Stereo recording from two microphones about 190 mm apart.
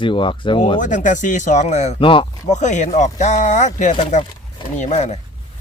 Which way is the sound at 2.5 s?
40° left (ahead or behind).